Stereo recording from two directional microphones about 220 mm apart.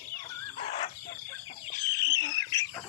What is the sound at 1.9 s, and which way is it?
Bird, 15° left (ahead or behind).